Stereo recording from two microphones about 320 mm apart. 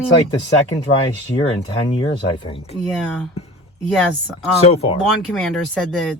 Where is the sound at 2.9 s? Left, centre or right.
Centre.